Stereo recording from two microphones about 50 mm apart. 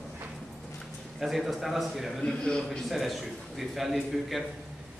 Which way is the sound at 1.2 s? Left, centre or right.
Centre.